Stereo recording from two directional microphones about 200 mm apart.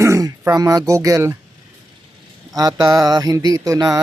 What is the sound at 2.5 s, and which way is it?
Speech, 20° right (ahead or behind).